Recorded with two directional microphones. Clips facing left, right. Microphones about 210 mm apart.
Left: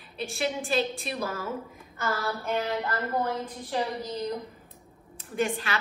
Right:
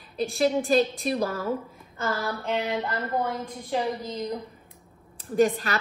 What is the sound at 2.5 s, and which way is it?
Speech, 15° right (ahead or behind).